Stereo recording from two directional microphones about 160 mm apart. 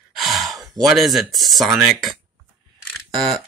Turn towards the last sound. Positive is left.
turn(degrees=0)  # may be behind; listen again after turning